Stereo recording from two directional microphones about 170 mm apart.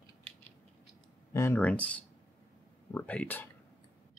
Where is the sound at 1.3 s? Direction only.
15° left (ahead or behind).